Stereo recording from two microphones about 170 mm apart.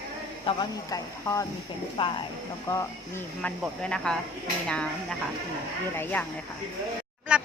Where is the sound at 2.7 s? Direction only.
10° left (ahead or behind).